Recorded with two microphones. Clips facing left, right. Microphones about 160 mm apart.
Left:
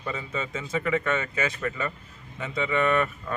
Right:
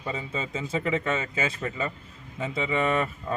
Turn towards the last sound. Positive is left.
turn(degrees=-30)  # may be behind; listen again after turning